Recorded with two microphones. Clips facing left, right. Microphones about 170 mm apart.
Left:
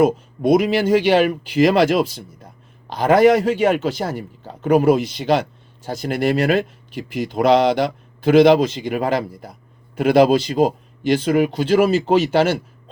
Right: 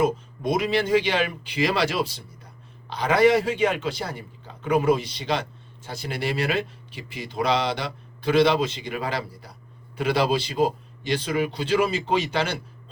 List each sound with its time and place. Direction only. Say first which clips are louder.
0.0 s speech: left 7 dB; 50° left (ahead or behind)